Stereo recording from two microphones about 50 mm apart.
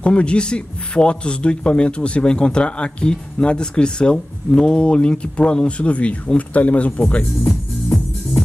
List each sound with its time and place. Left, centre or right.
0.0 s a man's voice: left